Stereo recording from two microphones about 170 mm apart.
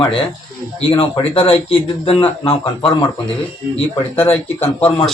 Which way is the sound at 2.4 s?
30° left (ahead or behind).